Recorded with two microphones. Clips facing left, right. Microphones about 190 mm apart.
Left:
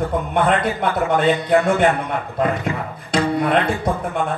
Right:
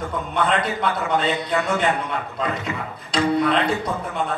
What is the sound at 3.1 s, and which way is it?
Speech, 50° left (ahead or behind).